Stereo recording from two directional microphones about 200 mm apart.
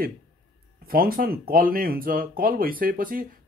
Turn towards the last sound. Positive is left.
turn(degrees=-45)  # may be behind; listen again after turning